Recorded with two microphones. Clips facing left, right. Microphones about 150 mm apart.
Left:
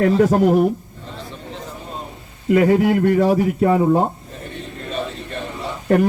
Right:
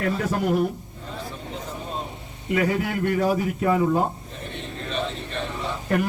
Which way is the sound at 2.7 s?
35° left (ahead or behind).